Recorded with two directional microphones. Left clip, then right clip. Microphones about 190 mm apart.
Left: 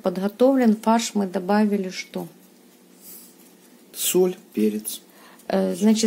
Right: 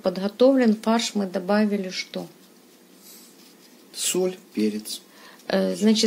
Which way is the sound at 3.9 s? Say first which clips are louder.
Left 4 dB; 45° left (ahead or behind).